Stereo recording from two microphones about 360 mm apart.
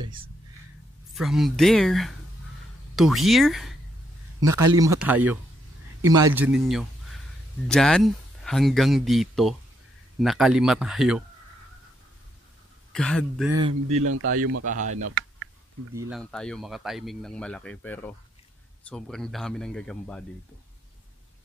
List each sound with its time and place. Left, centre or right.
0.0 s whispering: centre
1.1 s a man's voice: centre
12.9 s speech: centre
13.6 s speech: centre
14.0 s speech: right
14.6 s speech: right
15.0 s clicking: right
15.9 s speech: centre